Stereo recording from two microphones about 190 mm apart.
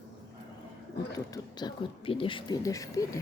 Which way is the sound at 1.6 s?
30° left (ahead or behind).